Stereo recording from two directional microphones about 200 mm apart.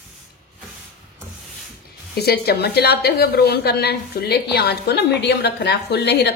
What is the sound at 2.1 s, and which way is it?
A woman's voice, 50° left (ahead or behind).